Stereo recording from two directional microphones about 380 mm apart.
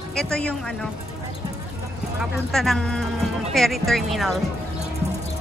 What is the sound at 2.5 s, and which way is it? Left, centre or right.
Speech, centre.